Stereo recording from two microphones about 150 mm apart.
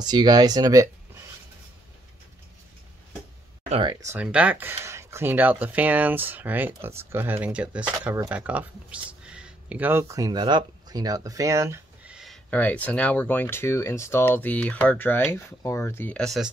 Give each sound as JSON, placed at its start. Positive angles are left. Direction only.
{"t": 0.0, "sound": "speech", "side_deg": -30}
{"t": 4.0, "sound": "speech", "side_deg": -10}
{"t": 12.1, "sound": "a sound", "side_deg": -5}
{"t": 12.4, "sound": "speech", "side_deg": 10}